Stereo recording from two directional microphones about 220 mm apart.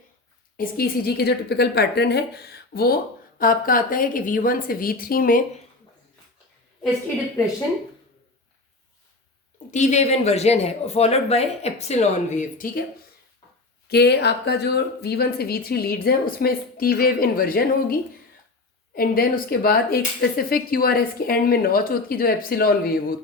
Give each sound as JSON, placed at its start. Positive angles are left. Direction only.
{"t": 0.5, "sound": "a woman's voice", "side_deg": 40}
{"t": 9.7, "sound": "speech", "side_deg": 30}
{"t": 13.8, "sound": "speech", "side_deg": 50}
{"t": 18.9, "sound": "speech", "side_deg": 40}